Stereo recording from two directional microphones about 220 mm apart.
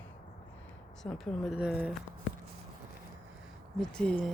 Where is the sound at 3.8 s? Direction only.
5° left (ahead or behind).